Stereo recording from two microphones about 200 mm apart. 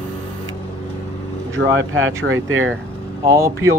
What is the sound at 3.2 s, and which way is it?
Speech, 15° right (ahead or behind).